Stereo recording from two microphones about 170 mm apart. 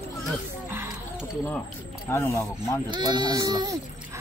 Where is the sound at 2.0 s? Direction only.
15° left (ahead or behind).